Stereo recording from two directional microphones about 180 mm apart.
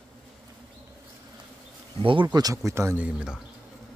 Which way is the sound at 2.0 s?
30° right (ahead or behind).